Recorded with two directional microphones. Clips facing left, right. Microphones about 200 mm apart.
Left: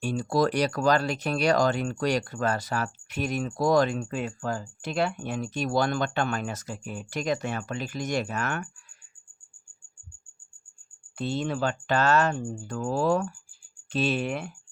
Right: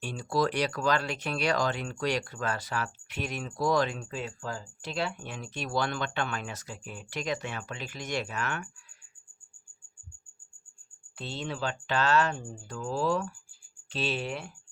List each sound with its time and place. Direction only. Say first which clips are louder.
0.0 s speech: left 4 dB; 45° left (ahead or behind)
11.2 s speech: left 7 dB; 50° left (ahead or behind)